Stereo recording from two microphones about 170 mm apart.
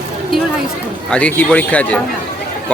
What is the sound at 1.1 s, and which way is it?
Speech, 5° left (ahead or behind).